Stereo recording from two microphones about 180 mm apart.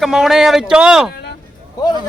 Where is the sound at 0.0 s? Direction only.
Centre (ahead or behind).